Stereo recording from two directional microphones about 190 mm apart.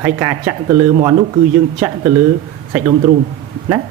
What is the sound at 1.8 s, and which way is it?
Speech, 10° right (ahead or behind).